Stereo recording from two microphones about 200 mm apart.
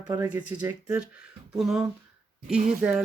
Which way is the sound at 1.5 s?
Centre (ahead or behind).